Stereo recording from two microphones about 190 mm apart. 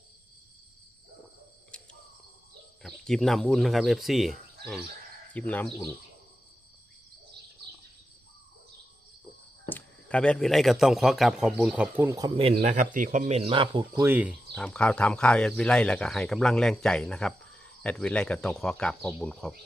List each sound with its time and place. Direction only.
1.7 s bird: 5° left (ahead or behind)
2.8 s speech: centre (ahead or behind)
9.6 s speech: 10° left (ahead or behind); by 12.3 s 15° right (ahead or behind)
12.6 s speech: 40° right (ahead or behind); by 14.0 s 25° right (ahead or behind)
14.0 s speech: 10° right (ahead or behind)
14.5 s speech: 5° left (ahead or behind)